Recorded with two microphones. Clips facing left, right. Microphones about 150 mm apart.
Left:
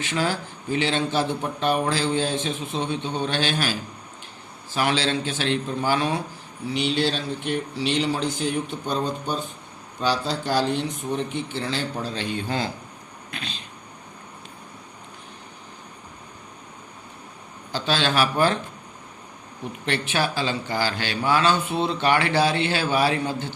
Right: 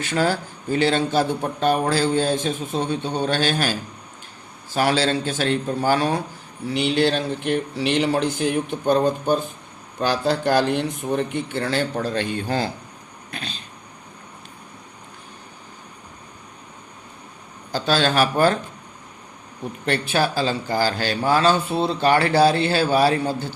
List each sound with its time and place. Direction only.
0.0 s speech: 45° right (ahead or behind)
6.7 s speech: 55° right (ahead or behind)
17.7 s speech: 45° right (ahead or behind)
19.8 s a man's voice: 40° right (ahead or behind)